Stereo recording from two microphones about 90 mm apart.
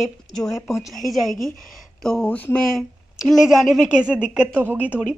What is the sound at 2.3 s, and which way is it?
Speech, 20° left (ahead or behind).